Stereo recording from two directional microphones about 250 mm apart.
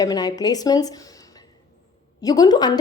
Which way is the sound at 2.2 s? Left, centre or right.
Centre.